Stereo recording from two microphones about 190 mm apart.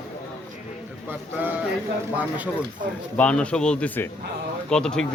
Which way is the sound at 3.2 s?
5° left (ahead or behind).